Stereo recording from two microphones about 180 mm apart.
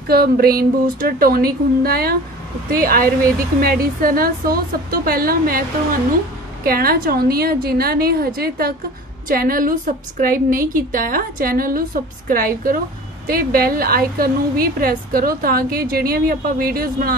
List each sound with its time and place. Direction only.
0.1 s a woman's voice: 55° right (ahead or behind)